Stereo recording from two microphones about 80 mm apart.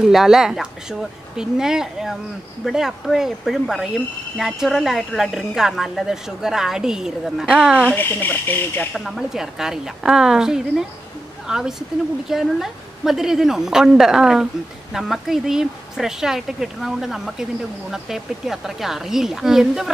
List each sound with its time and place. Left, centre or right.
0.0 s a woman's voice: centre
7.9 s speech: left
8.9 s a woman's voice: centre